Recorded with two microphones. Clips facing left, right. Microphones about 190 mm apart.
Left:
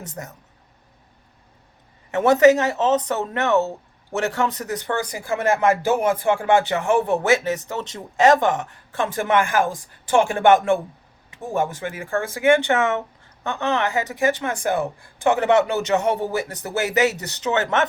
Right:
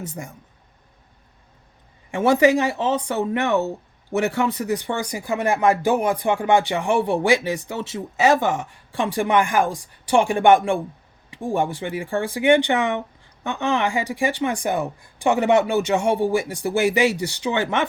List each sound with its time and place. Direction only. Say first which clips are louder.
0.0 s speech: right 2 dB; 10° right (ahead or behind)
2.0 s speech: left 2 dB; 10° right (ahead or behind)
12.5 s speech: even; 15° right (ahead or behind)